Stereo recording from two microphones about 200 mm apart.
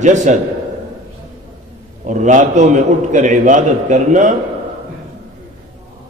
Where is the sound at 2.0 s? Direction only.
40° right (ahead or behind).